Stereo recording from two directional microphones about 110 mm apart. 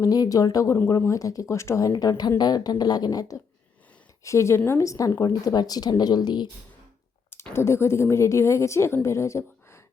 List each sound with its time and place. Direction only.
0.0 s speech: 35° left (ahead or behind)
1.9 s a woman's voice: 35° left (ahead or behind)
7.5 s a woman's voice: 25° left (ahead or behind)